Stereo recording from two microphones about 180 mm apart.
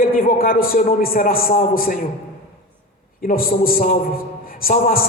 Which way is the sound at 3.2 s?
55° left (ahead or behind).